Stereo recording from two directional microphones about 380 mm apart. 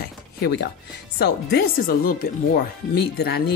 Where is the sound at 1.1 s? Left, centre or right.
Left.